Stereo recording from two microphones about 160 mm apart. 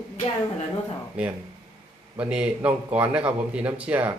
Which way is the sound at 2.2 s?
10° right (ahead or behind).